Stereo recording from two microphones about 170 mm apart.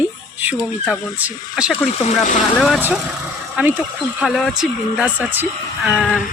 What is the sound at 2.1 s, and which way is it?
Speech, 45° left (ahead or behind).